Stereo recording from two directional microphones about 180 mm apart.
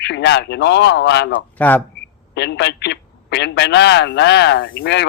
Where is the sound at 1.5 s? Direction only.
10° left (ahead or behind).